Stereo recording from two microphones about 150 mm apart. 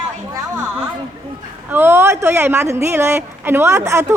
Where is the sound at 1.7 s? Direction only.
15° right (ahead or behind).